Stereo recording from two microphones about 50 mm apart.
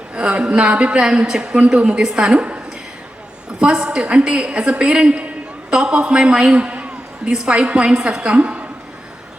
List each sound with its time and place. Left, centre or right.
0.1 s a woman's voice: right
3.6 s a woman's voice: centre